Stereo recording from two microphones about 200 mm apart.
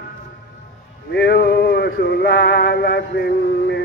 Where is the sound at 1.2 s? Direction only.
55° left (ahead or behind).